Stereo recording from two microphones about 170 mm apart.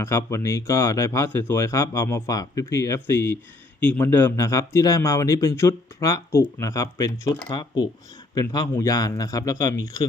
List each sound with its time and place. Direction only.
0.0 s speech: 15° left (ahead or behind)